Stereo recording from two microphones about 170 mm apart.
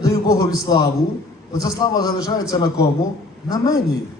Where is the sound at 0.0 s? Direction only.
20° left (ahead or behind).